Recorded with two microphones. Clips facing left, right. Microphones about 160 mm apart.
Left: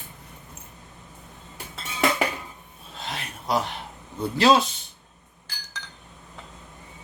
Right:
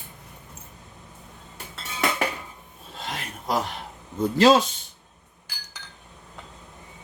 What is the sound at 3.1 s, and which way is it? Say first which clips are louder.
Filing: left 1 dB; 45° right (ahead or behind).